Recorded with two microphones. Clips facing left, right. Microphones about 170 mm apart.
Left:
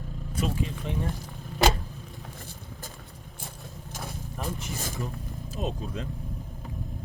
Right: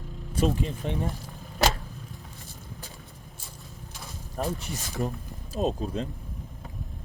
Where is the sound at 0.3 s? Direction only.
40° right (ahead or behind).